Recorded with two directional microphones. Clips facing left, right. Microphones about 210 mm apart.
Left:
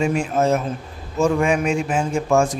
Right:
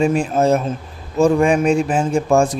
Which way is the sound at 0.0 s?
35° right (ahead or behind).